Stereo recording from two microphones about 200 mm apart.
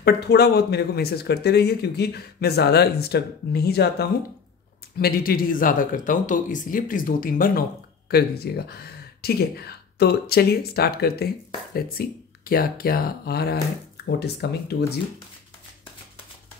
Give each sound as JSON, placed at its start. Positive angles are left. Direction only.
{"t": 0.0, "sound": "speech", "side_deg": 55}